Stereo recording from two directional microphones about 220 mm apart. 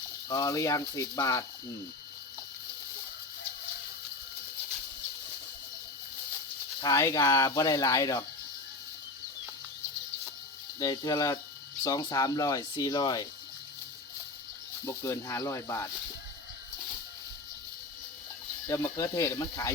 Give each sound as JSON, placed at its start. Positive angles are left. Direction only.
{"t": 0.3, "sound": "speech", "side_deg": 15}
{"t": 6.8, "sound": "speech", "side_deg": 15}
{"t": 10.8, "sound": "speech", "side_deg": 15}
{"t": 14.8, "sound": "speech", "side_deg": 15}
{"t": 18.7, "sound": "speech", "side_deg": 15}